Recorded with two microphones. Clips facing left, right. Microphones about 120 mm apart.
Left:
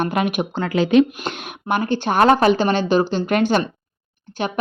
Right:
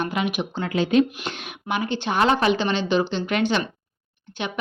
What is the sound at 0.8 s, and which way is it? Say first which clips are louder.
Speech: left 4 dB; 80° left.